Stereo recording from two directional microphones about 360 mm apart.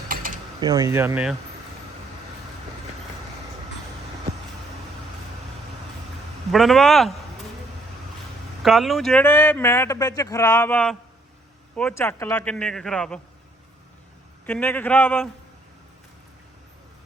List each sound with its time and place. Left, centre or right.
0.1 s a sound: right
0.6 s speech: centre
6.5 s speech: centre
8.6 s speech: centre
14.4 s speech: centre